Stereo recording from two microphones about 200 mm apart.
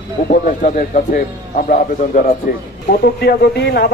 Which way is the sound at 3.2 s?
55° left (ahead or behind).